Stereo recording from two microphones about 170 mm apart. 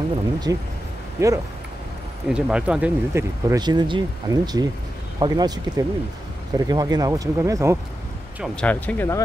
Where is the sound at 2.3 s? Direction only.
5° right (ahead or behind).